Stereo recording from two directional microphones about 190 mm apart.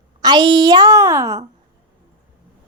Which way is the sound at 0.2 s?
25° right (ahead or behind).